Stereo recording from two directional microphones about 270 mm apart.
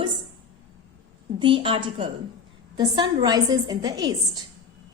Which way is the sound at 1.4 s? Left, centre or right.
Centre.